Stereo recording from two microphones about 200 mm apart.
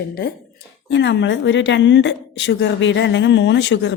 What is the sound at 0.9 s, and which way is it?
A woman's voice, 60° left (ahead or behind).